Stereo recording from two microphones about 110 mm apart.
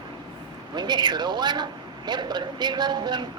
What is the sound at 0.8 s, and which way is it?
A man's voice, 40° right (ahead or behind).